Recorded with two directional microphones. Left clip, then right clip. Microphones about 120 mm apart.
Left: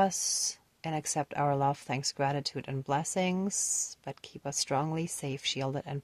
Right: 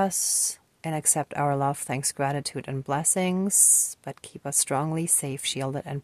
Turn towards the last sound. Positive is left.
turn(degrees=-45)  # may be behind; listen again after turning